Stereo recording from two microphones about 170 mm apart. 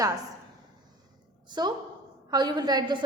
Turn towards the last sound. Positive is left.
turn(degrees=-25)  # may be behind; listen again after turning